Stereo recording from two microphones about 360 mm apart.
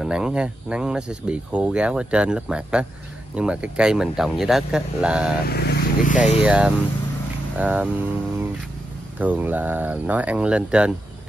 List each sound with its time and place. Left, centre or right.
0.0 s speech: centre
5.5 s speech: left
6.4 s speech: centre